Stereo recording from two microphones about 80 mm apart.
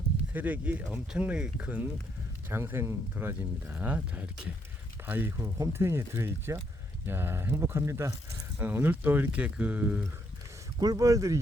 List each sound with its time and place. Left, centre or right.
0.3 s speech: centre
2.5 s speech: right
5.4 s speech: right
8.6 s speech: right
10.8 s speech: right